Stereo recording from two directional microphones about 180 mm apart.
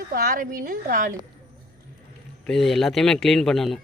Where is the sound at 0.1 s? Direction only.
55° right (ahead or behind).